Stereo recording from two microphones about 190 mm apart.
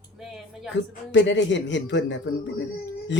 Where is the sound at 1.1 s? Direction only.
75° left (ahead or behind).